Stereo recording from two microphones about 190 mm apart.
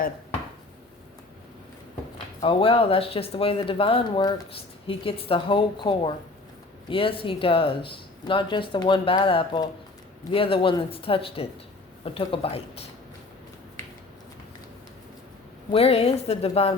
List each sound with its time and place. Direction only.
2.4 s a woman's voice: 30° left (ahead or behind)
15.7 s a woman's voice: 30° left (ahead or behind)